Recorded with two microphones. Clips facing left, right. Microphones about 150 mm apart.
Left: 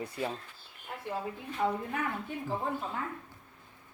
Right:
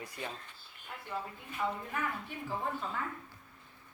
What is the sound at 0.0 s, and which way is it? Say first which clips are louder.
Speech: left 7 dB; 30° left (ahead or behind).